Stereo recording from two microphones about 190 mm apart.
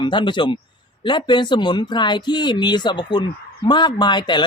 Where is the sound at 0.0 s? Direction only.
25° left (ahead or behind).